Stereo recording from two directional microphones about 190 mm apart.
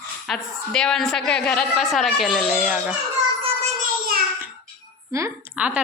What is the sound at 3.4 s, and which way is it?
Child singing, 45° right (ahead or behind).